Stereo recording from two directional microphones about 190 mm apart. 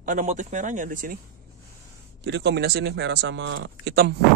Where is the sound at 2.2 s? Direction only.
65° right (ahead or behind).